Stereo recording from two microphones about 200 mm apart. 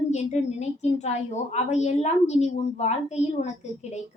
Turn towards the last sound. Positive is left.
turn(degrees=35)  # may be behind; listen again after turning